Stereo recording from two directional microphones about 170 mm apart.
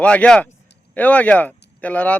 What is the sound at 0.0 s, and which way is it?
Speech, 5° left (ahead or behind).